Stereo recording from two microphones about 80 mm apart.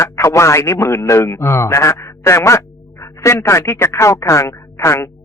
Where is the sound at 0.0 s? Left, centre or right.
Left.